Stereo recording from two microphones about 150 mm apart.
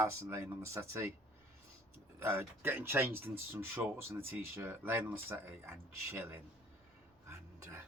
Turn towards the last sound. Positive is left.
turn(degrees=-15)  # may be behind; listen again after turning